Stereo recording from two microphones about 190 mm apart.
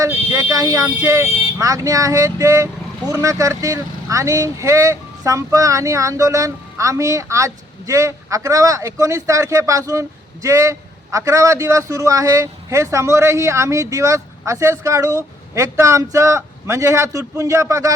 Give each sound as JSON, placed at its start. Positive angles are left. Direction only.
{"t": 0.0, "sound": "speech", "side_deg": -15}